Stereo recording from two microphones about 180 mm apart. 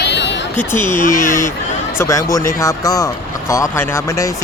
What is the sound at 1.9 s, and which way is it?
Speech, 15° left (ahead or behind).